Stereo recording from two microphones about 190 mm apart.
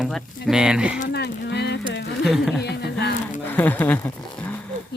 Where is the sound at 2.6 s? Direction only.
60° left (ahead or behind).